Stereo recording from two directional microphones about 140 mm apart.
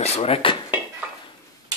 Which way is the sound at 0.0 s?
45° left (ahead or behind).